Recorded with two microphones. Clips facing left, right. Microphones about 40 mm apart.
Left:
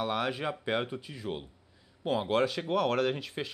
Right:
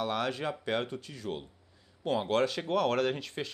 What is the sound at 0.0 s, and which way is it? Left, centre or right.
A man's voice, centre.